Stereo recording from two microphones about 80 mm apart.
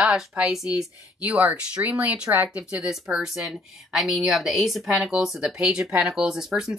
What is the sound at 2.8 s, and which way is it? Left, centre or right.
Speech, centre.